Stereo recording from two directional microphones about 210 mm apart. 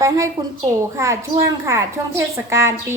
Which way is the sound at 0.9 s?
15° right (ahead or behind).